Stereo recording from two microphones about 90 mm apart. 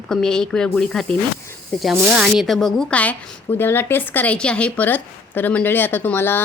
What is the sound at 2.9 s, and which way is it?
A woman's voice, 15° left (ahead or behind).